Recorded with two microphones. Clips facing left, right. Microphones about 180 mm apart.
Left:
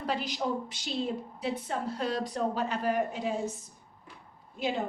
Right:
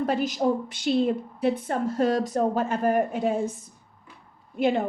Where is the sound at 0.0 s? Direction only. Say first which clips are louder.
Right 8 dB; 45° right (ahead or behind).